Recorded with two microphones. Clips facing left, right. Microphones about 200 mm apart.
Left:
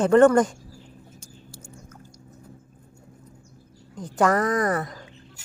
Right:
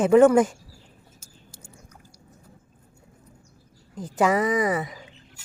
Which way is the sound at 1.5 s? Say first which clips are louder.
Left 4 dB; 15° right (ahead or behind).